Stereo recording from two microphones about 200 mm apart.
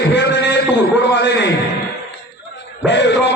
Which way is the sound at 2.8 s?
60° left (ahead or behind).